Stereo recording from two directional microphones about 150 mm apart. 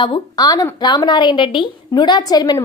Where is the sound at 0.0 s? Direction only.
30° left (ahead or behind).